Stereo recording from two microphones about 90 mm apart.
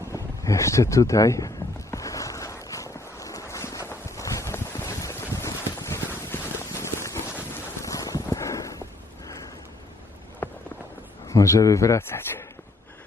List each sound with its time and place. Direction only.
0.1 s a sound: 35° left (ahead or behind)
7.5 s wind noise: 35° left (ahead or behind)
10.4 s walk: 25° left (ahead or behind)
11.3 s a man's voice: 35° left (ahead or behind)